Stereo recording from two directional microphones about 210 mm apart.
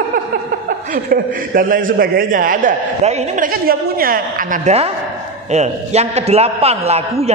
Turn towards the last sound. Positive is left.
turn(degrees=-30)  # may be behind; listen again after turning